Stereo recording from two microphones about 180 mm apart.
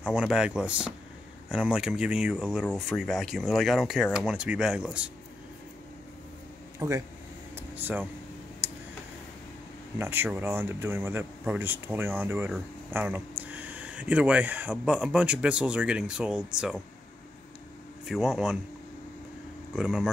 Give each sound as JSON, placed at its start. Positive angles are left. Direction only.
{"t": 0.0, "sound": "speech", "side_deg": -5}
{"t": 6.8, "sound": "speech", "side_deg": -15}
{"t": 7.5, "sound": "air conditioning", "side_deg": -10}
{"t": 9.9, "sound": "speech", "side_deg": -10}
{"t": 18.0, "sound": "speech", "side_deg": 0}
{"t": 19.7, "sound": "speech", "side_deg": -5}